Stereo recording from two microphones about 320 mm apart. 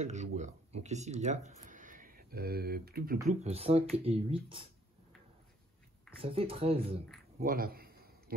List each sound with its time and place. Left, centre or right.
0.0 s speech: right
3.2 s speech: centre
6.2 s speech: centre
7.3 s a sound: right